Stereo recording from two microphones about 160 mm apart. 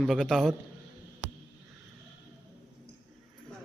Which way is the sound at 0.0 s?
Centre (ahead or behind).